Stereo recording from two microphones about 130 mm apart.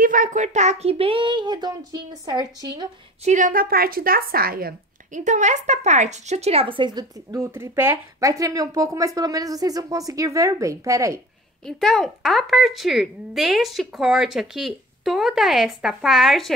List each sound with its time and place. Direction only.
0.0 s speech: 90° right; by 2.9 s 35° right (ahead or behind)
3.3 s a woman's voice: 85° right
5.1 s a woman's voice: 65° right (ahead or behind); by 7.4 s 35° right (ahead or behind)
7.5 s a woman's voice: 20° right (ahead or behind)
11.6 s speech: 5° left (ahead or behind)